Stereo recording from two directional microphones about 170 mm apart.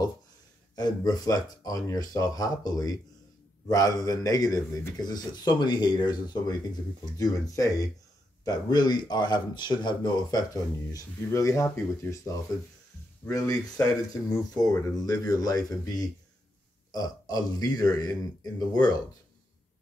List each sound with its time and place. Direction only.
0.7 s speech: 25° left (ahead or behind)